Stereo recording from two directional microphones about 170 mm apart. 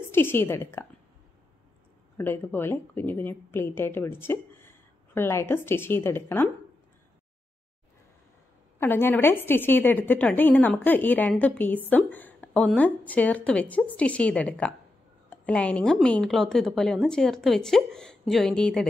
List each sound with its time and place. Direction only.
0.0 s a woman's voice: 15° left (ahead or behind)
2.1 s a woman's voice: 10° left (ahead or behind)
8.7 s a woman's voice: 10° left (ahead or behind)